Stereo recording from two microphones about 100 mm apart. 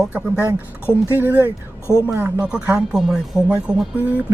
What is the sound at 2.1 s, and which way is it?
Speech, 25° right (ahead or behind).